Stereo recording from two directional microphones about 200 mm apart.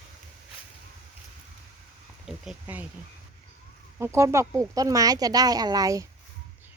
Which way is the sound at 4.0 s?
15° right (ahead or behind).